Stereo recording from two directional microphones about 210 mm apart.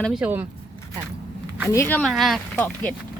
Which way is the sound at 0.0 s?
5° right (ahead or behind).